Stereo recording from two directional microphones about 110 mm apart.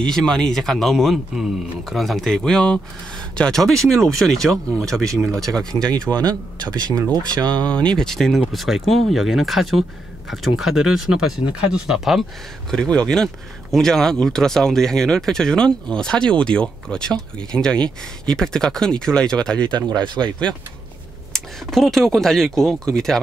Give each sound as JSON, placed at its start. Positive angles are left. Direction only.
{"t": 0.0, "sound": "a man's voice", "side_deg": 5}
{"t": 6.7, "sound": "speech", "side_deg": -35}
{"t": 7.5, "sound": "a man's voice", "side_deg": 10}
{"t": 19.7, "sound": "speech", "side_deg": -45}
{"t": 21.3, "sound": "a man's voice", "side_deg": 5}